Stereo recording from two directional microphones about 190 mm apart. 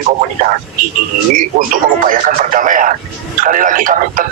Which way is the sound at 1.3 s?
45° right (ahead or behind).